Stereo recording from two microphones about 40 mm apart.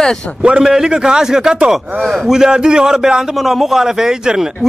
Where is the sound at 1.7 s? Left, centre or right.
Centre.